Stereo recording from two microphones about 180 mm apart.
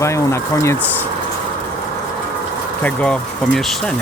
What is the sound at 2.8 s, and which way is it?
Speech, 5° left (ahead or behind).